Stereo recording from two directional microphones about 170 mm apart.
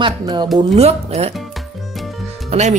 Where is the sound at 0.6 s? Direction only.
40° right (ahead or behind).